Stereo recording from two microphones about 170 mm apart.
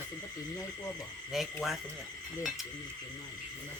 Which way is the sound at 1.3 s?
Centre (ahead or behind).